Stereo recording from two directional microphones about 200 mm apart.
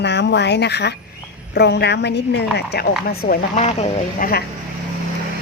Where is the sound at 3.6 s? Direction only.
35° left (ahead or behind).